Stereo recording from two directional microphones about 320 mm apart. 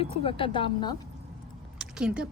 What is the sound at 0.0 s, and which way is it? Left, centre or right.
Speech, centre.